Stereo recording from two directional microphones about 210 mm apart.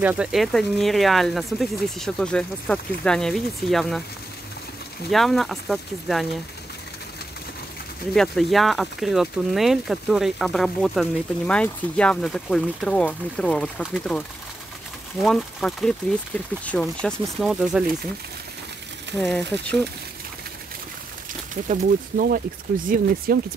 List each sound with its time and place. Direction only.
0.0 s speech: 5° right (ahead or behind)
5.1 s speech: centre (ahead or behind)
8.1 s speech: centre (ahead or behind)
15.2 s speech: centre (ahead or behind)
19.1 s speech: 5° left (ahead or behind)
21.6 s speech: 40° right (ahead or behind)